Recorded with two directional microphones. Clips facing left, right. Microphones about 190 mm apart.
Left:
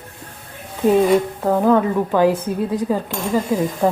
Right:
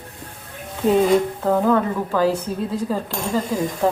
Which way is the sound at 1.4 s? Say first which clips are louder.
Left 2 dB; 15° left (ahead or behind).